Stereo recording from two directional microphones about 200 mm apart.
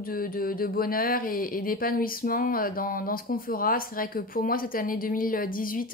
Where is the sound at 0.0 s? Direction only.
45° left (ahead or behind).